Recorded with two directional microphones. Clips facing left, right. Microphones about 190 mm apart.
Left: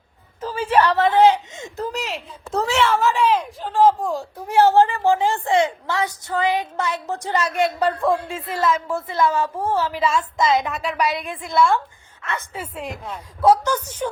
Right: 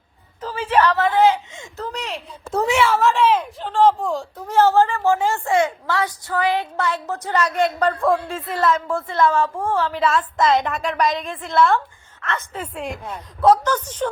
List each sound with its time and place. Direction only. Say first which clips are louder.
0.4 s speech: even; 10° left (ahead or behind)
2.0 s a woman's voice: left 1 dB; centre (ahead or behind)
2.6 s a woman's voice: right 1 dB; 15° right (ahead or behind); by 7.4 s 15° left (ahead or behind)
7.9 s a woman's voice: right 1 dB; centre (ahead or behind)
8.9 s speech: right 1 dB; 15° left (ahead or behind)
9.7 s a woman's voice: right 1 dB; 5° left (ahead or behind)
13.4 s speech: right 1 dB; 10° left (ahead or behind)